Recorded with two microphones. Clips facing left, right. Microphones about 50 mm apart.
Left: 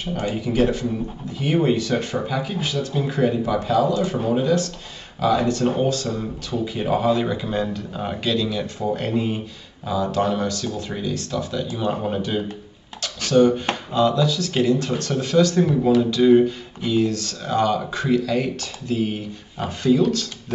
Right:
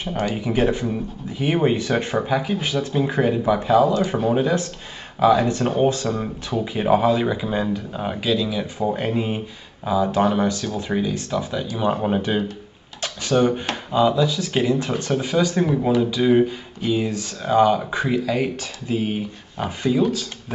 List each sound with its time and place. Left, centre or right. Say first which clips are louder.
0.3 s speech: left 1 dB; right